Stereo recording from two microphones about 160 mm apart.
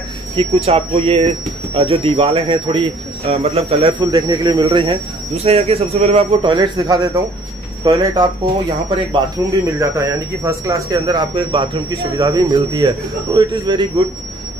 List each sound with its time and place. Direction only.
0.4 s speech: 35° right (ahead or behind)
4.0 s speech: 25° right (ahead or behind)
9.4 s speech: 20° right (ahead or behind)